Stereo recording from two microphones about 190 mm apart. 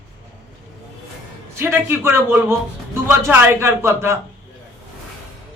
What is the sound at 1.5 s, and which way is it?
A man's voice, 15° right (ahead or behind).